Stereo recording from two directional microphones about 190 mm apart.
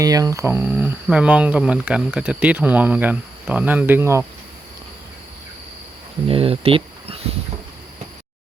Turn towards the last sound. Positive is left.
turn(degrees=-30)  # may be behind; listen again after turning